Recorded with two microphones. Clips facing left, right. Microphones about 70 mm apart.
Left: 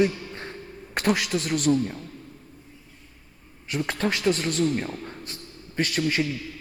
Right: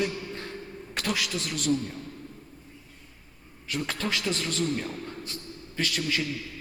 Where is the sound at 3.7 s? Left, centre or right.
Left.